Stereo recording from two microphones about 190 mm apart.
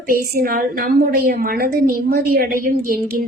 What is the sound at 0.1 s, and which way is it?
A woman's voice, 50° right (ahead or behind).